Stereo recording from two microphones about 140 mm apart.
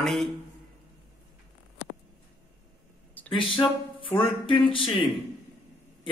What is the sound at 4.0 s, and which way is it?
Speech, 40° left (ahead or behind).